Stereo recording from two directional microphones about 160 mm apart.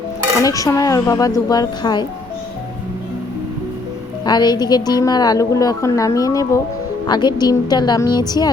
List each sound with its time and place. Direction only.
0.4 s a woman's voice: 20° left (ahead or behind)
4.3 s a woman's voice: 25° left (ahead or behind)